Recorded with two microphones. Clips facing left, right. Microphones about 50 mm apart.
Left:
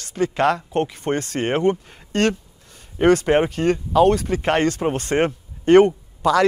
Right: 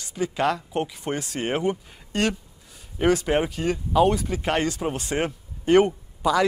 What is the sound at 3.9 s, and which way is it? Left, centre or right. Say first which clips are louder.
Speech: left 4 dB; centre.